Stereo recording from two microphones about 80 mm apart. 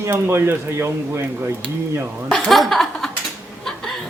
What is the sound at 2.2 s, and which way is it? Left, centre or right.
Speech, centre.